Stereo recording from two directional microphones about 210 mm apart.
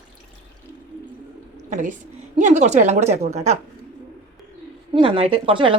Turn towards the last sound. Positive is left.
turn(degrees=-25)  # may be behind; listen again after turning